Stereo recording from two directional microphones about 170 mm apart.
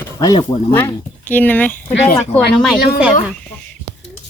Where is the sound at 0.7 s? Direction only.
10° left (ahead or behind).